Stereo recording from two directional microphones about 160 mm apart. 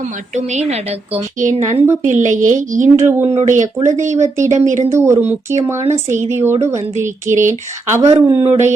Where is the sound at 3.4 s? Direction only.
50° right (ahead or behind).